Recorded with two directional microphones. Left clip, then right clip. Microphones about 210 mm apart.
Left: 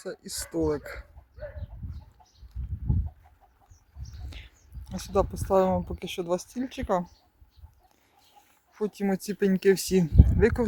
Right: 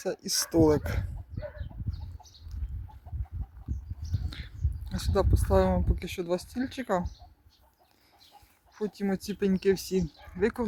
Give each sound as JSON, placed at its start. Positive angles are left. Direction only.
{"t": 0.0, "sound": "speech", "side_deg": -15}
{"t": 4.9, "sound": "speech", "side_deg": 5}
{"t": 8.7, "sound": "speech", "side_deg": 15}